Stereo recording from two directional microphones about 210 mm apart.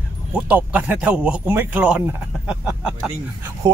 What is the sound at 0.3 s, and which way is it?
Speech, 5° right (ahead or behind).